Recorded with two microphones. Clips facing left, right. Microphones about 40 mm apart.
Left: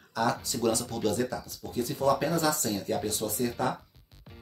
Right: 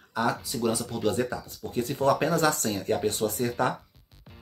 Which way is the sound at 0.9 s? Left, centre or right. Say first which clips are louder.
Right 2 dB; right.